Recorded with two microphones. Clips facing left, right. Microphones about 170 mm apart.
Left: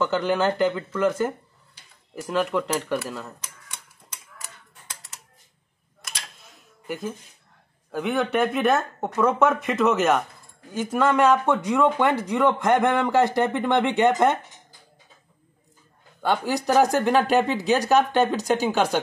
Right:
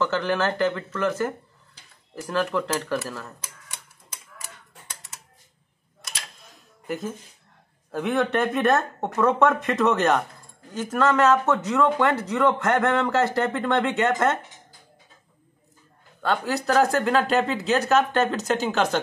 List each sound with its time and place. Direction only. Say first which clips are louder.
0.0 s speech: left 2 dB; 15° left (ahead or behind)
6.5 s music: right 2 dB; centre (ahead or behind)
7.9 s speech: even; centre (ahead or behind)
16.2 s speech: left 1 dB; 15° left (ahead or behind)